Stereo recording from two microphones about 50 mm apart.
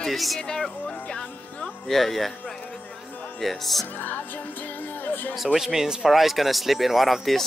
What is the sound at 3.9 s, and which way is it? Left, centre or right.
Music, left.